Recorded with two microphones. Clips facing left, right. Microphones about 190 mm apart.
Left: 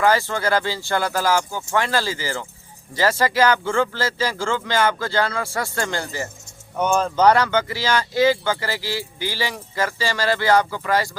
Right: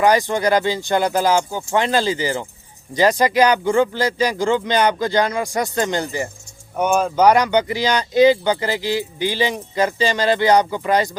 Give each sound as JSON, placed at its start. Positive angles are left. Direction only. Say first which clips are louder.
{"t": 0.0, "sound": "speech", "louder": "right 3 dB", "side_deg": -15}